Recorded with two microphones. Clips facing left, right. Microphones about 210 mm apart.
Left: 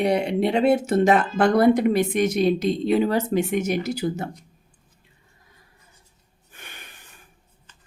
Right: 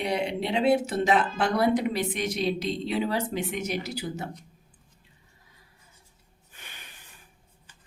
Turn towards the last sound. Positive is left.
turn(degrees=55)  # may be behind; listen again after turning